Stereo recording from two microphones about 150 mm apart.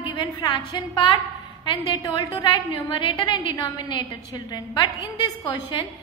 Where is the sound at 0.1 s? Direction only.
35° left (ahead or behind).